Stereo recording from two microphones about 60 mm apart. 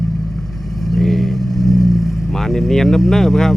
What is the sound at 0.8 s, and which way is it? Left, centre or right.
Vehicle, centre.